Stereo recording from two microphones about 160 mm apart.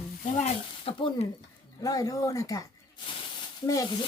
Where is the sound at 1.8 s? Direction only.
20° left (ahead or behind).